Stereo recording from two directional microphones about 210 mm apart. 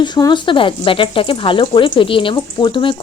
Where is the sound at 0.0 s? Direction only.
20° left (ahead or behind).